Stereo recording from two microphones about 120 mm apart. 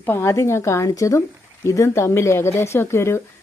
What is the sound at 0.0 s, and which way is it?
Speech, 20° left (ahead or behind).